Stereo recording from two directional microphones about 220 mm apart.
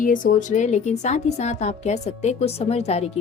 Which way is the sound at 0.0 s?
35° left (ahead or behind).